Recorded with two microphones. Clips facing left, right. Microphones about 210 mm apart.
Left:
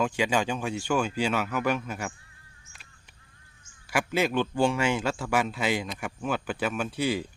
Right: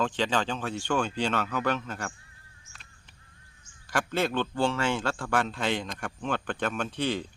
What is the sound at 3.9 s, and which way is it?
A man's voice, 10° left (ahead or behind).